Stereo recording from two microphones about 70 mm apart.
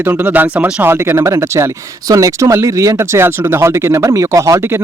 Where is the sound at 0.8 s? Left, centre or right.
Right.